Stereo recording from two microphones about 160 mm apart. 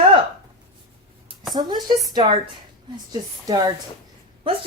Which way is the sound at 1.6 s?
25° right (ahead or behind).